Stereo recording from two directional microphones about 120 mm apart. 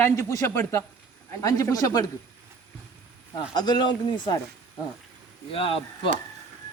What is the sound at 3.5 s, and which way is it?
Speech, 35° left (ahead or behind).